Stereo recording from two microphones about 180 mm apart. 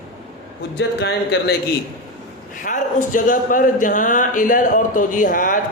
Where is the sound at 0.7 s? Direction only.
70° left (ahead or behind).